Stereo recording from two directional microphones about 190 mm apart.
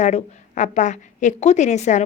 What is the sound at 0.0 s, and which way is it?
A woman's voice, 40° left (ahead or behind).